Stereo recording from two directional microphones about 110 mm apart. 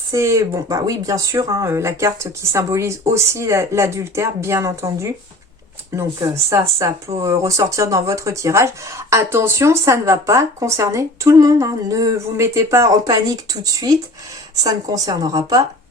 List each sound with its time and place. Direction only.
0.1 s speech: 25° right (ahead or behind)